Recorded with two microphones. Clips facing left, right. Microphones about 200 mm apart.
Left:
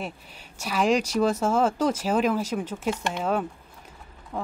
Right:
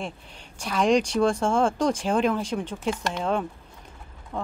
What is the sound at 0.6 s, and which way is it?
Speech, 5° left (ahead or behind).